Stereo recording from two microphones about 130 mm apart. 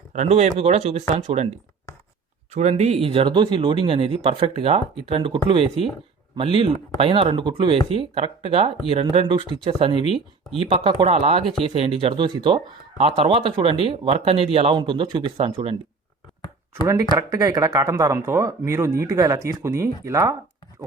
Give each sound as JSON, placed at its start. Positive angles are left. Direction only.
{"t": 0.1, "sound": "speech", "side_deg": -60}
{"t": 2.6, "sound": "speech", "side_deg": -60}
{"t": 7.9, "sound": "speech", "side_deg": -50}
{"t": 13.0, "sound": "speech", "side_deg": -50}
{"t": 14.8, "sound": "speech", "side_deg": -40}
{"t": 16.8, "sound": "speech", "side_deg": -25}